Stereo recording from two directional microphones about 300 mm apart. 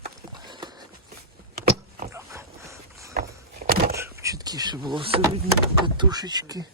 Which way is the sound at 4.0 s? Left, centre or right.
Centre.